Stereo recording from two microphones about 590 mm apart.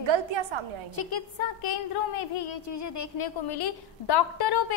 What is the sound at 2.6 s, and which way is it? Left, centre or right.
A woman's voice, left.